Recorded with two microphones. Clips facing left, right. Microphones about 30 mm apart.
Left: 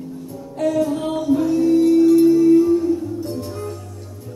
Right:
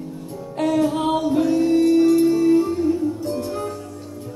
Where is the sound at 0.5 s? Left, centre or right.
Right.